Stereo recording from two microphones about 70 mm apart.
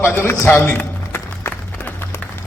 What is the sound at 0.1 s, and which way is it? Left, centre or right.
Speech, left.